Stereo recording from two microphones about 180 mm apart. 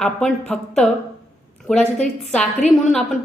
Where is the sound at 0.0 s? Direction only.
5° left (ahead or behind).